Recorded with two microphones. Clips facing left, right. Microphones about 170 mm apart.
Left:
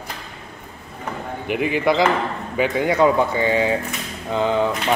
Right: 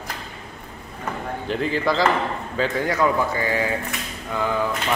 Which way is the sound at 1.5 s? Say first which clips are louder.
Left 3 dB; 15° left (ahead or behind).